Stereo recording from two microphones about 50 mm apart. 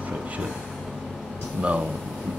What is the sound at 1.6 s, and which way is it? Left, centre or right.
Speech, right.